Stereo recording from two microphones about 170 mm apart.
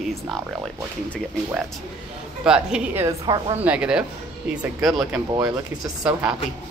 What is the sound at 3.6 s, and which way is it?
A woman's voice, 10° right (ahead or behind).